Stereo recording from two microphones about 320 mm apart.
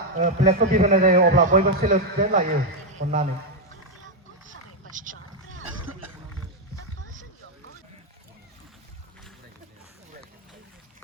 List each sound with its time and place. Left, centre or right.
0.2 s a man's voice: right